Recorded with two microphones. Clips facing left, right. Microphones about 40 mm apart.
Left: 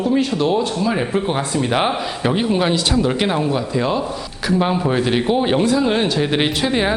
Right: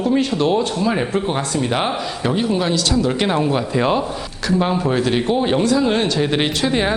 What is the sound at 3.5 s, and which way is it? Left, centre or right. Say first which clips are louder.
Speech: right 2 dB; right.